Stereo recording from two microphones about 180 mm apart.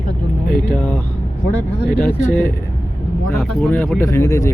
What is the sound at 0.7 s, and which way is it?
Speech, 10° left (ahead or behind).